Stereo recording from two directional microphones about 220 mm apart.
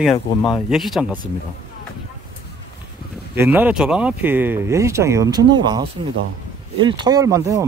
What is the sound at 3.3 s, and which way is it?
Speech, 10° right (ahead or behind).